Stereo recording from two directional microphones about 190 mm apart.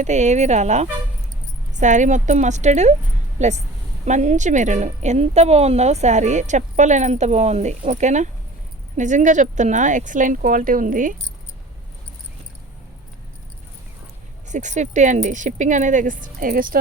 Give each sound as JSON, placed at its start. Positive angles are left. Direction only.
{"t": 0.0, "sound": "a woman's voice", "side_deg": -40}
{"t": 14.5, "sound": "a woman's voice", "side_deg": -40}